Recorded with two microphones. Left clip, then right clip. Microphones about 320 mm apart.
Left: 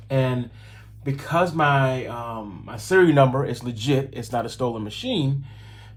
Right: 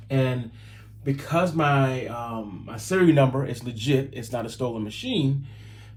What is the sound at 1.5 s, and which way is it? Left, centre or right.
Speech, centre.